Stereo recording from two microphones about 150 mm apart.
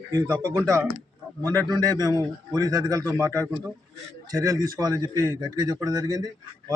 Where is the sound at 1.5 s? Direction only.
25° right (ahead or behind).